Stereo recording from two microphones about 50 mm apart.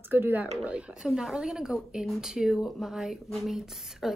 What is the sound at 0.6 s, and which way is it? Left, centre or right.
A woman's voice, right.